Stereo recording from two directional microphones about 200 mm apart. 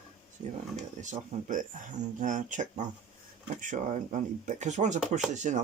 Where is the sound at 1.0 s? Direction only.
35° right (ahead or behind).